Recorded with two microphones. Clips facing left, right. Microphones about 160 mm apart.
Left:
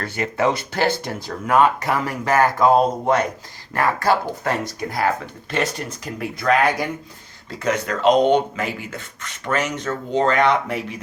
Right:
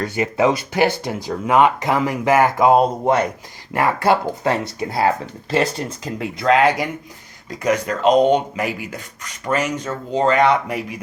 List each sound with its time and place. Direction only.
0.0 s speech: 20° right (ahead or behind)